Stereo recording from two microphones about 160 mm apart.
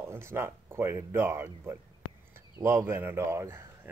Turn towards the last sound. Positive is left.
turn(degrees=-15)  # may be behind; listen again after turning